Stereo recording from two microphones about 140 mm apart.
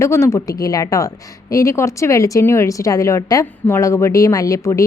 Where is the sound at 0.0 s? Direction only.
20° left (ahead or behind).